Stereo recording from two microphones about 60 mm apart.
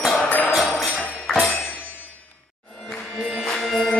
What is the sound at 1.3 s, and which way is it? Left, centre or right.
Music, centre.